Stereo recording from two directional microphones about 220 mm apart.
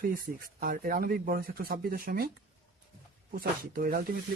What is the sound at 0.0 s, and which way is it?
Speech, 40° right (ahead or behind).